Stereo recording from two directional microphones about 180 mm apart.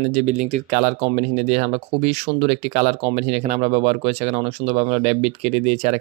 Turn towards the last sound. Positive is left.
turn(degrees=-35)  # may be behind; listen again after turning